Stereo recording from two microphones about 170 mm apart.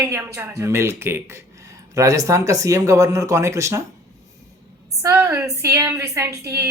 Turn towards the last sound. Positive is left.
turn(degrees=-20)  # may be behind; listen again after turning